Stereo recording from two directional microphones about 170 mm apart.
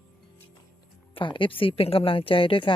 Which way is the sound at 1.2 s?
30° left (ahead or behind).